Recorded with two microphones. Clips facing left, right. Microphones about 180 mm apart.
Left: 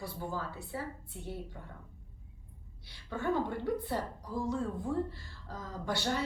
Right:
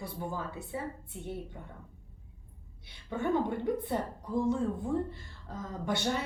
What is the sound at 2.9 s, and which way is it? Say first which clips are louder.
A woman's voice: right 2 dB; 20° right (ahead or behind).